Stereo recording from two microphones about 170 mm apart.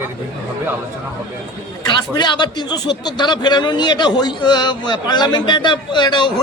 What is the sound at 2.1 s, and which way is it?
A man's voice, 25° left (ahead or behind).